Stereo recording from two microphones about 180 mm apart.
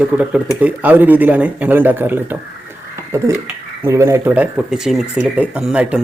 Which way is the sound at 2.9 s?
15° right (ahead or behind).